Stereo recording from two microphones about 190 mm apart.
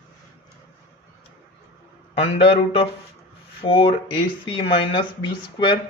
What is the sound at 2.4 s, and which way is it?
A man's voice, 30° left (ahead or behind).